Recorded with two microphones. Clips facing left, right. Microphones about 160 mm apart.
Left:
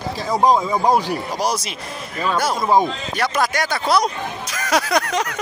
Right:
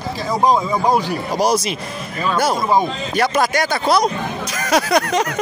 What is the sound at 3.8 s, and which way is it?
Speech, 30° right (ahead or behind).